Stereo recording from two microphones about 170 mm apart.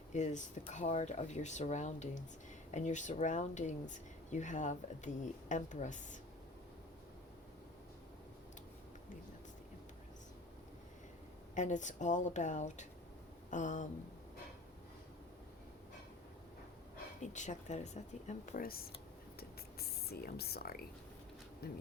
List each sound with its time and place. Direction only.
0.1 s speech: 45° left (ahead or behind)
11.5 s speech: 45° left (ahead or behind)
17.3 s speech: 45° left (ahead or behind)
19.4 s a sound: 65° left (ahead or behind)
21.6 s speech: 65° left (ahead or behind)